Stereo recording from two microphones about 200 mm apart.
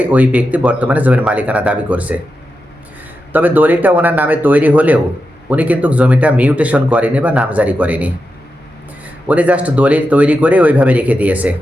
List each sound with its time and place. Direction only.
0.0 s speech: 5° right (ahead or behind)
3.3 s speech: 10° right (ahead or behind)